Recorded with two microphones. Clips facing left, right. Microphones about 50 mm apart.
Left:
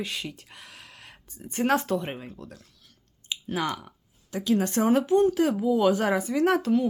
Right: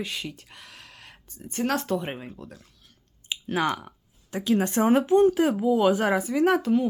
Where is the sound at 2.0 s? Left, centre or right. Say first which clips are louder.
Right 1 dB; centre.